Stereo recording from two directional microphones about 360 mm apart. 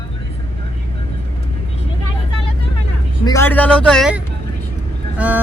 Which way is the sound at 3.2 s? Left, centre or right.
Centre.